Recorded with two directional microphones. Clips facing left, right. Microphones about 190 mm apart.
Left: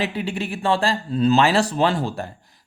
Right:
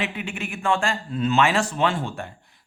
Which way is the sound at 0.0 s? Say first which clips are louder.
Left 5 dB; 35° left (ahead or behind).